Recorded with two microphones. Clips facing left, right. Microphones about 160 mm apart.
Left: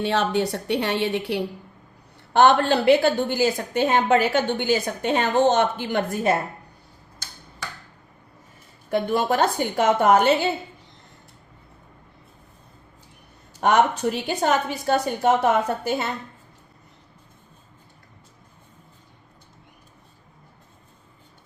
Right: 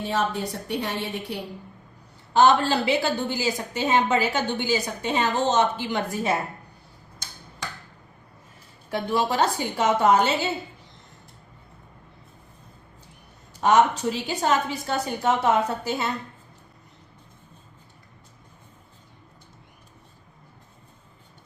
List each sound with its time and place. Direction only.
0.0 s a woman's voice: 75° left (ahead or behind)
2.1 s a woman's voice: 60° left (ahead or behind)
8.9 s a woman's voice: 55° left (ahead or behind)
13.6 s a woman's voice: 60° left (ahead or behind)